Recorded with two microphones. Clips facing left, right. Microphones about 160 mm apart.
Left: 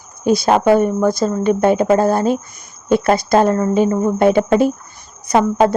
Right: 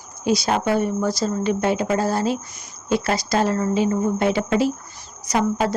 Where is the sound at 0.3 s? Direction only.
55° left (ahead or behind).